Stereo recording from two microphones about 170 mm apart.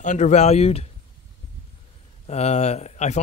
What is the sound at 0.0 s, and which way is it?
Speech, 45° left (ahead or behind).